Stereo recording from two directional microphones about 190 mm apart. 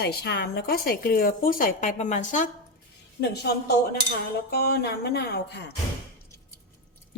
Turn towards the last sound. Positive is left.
turn(degrees=60)  # may be behind; listen again after turning